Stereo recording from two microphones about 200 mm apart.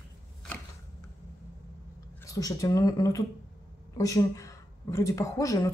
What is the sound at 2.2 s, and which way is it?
Speech, 15° left (ahead or behind).